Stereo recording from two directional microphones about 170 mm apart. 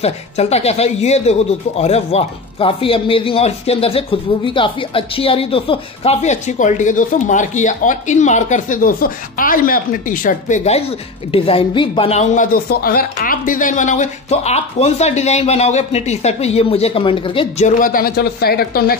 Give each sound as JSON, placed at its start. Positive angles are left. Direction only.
{"t": 0.0, "sound": "speech", "side_deg": 40}
{"t": 12.6, "sound": "speech", "side_deg": 60}
{"t": 17.6, "sound": "a man's voice", "side_deg": 50}